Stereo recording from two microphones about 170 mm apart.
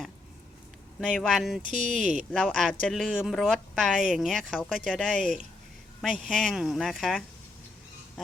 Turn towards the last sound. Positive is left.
turn(degrees=0)  # may be behind; listen again after turning